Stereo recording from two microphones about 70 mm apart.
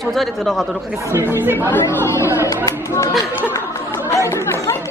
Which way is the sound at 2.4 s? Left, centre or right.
Left.